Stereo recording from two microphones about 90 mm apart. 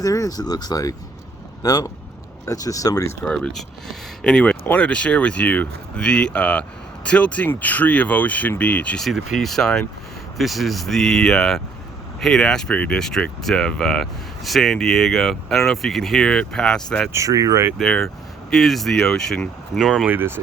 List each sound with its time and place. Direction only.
0.0 s speech: 40° left (ahead or behind)
3.2 s speech: 10° left (ahead or behind)
9.0 s speech: centre (ahead or behind)
17.1 s speech: 35° right (ahead or behind)
17.7 s speech: 5° left (ahead or behind)
20.1 s speech: 25° right (ahead or behind)